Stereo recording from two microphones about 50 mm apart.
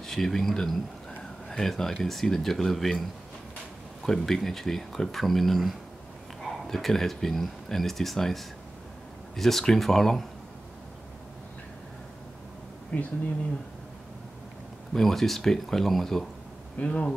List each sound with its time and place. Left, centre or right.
0.0 s speech: centre
4.0 s speech: centre
12.9 s speech: left
15.0 s speech: centre
16.7 s speech: left